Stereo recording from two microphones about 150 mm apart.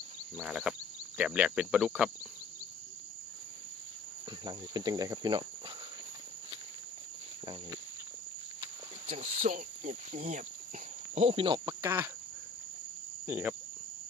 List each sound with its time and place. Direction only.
0.4 s cricket: 5° right (ahead or behind)
1.1 s speech: 10° right (ahead or behind)
4.4 s speech: 30° right (ahead or behind)
9.0 s speech: 55° right (ahead or behind); by 12.1 s 15° right (ahead or behind)
13.2 s cricket: 10° right (ahead or behind)